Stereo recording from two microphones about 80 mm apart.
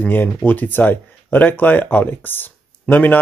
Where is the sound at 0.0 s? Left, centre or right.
Centre.